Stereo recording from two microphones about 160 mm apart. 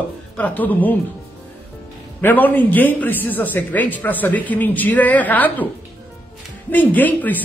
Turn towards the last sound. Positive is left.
turn(degrees=10)  # may be behind; listen again after turning